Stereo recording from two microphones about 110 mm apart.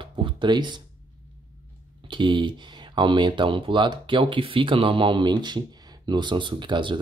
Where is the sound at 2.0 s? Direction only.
45° right (ahead or behind).